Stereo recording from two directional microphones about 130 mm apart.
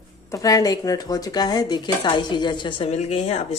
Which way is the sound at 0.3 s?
30° left (ahead or behind).